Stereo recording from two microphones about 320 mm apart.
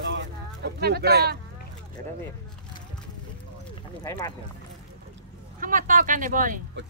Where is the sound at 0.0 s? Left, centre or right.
Right.